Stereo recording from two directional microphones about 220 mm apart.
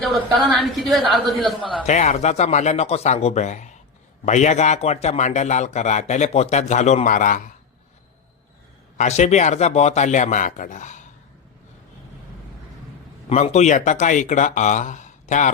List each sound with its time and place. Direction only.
0.4 s a woman's voice: centre (ahead or behind)
1.9 s speech: 30° left (ahead or behind)
9.0 s speech: 30° left (ahead or behind)
13.2 s speech: 30° left (ahead or behind)